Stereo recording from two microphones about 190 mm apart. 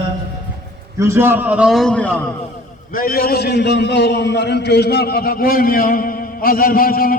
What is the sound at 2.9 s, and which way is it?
A man's voice, 50° left (ahead or behind).